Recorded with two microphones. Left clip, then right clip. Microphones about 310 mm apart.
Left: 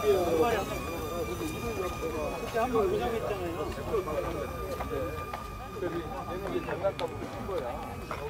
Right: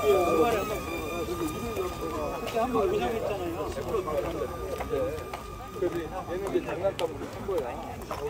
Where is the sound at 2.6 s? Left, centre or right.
Right.